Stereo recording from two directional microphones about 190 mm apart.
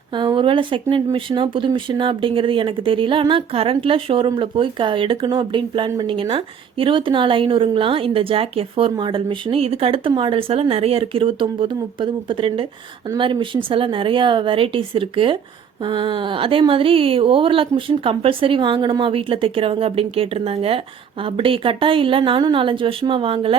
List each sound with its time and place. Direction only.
0.1 s speech: 25° right (ahead or behind)